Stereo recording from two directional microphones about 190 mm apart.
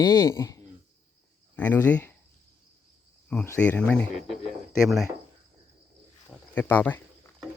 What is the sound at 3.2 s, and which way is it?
Speech, 10° left (ahead or behind).